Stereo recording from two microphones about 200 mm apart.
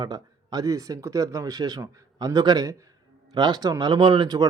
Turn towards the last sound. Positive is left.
turn(degrees=-20)  # may be behind; listen again after turning